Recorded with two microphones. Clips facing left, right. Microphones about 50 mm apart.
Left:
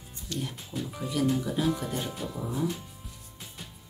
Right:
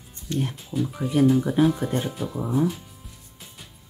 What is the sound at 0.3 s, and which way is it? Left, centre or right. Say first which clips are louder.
Speech: right 8 dB; right.